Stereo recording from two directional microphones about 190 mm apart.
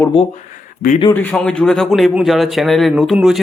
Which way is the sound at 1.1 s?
10° left (ahead or behind).